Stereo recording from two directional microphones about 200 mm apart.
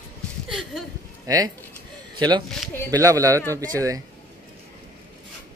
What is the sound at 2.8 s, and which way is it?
Speech, 15° right (ahead or behind).